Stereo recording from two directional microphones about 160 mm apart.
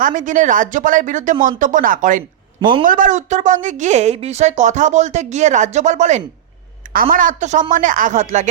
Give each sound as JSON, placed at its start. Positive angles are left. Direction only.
{"t": 0.0, "sound": "speech", "side_deg": -55}
{"t": 6.9, "sound": "speech", "side_deg": -60}